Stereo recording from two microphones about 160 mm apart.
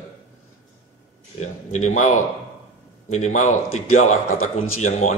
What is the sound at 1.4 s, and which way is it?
A man's voice, 45° left (ahead or behind).